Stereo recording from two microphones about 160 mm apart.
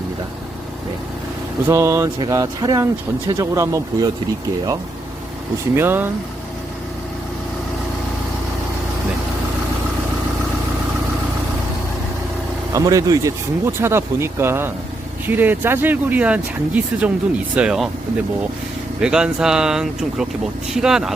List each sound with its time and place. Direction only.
1.6 s speech: 15° right (ahead or behind)
5.7 s speech: 15° right (ahead or behind)
12.7 s speech: 20° right (ahead or behind)
19.0 s speech: 5° right (ahead or behind)